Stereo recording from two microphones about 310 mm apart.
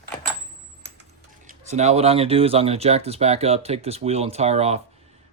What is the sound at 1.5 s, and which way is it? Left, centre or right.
Speech, right.